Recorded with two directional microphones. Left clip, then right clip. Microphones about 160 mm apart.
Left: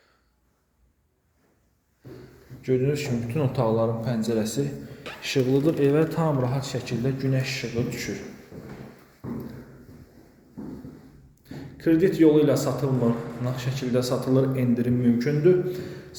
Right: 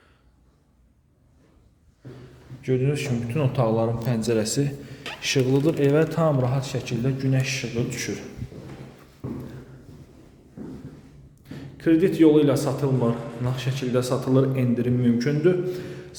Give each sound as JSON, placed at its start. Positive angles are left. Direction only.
{"t": 2.6, "sound": "a man's voice", "side_deg": -10}
{"t": 3.8, "sound": "a man's voice", "side_deg": -25}
{"t": 11.4, "sound": "a man's voice", "side_deg": -10}